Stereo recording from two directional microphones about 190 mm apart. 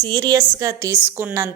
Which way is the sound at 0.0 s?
20° right (ahead or behind).